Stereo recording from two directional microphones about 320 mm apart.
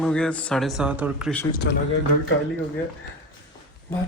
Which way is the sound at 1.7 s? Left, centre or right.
Left.